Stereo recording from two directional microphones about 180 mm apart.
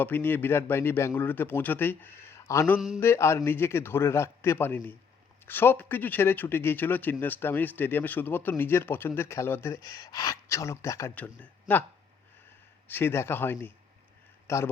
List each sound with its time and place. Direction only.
0.0 s speech: 10° left (ahead or behind)
2.7 s mantra: 5° right (ahead or behind)
3.0 s speech: 15° left (ahead or behind)
12.9 s speech: 15° left (ahead or behind)